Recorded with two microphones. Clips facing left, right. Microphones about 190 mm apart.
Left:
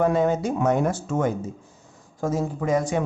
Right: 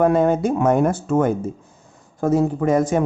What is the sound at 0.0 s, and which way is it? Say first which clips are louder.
Speech: right 4 dB; 55° right (ahead or behind).